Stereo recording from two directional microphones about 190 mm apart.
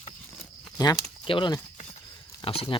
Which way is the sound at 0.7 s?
20° left (ahead or behind).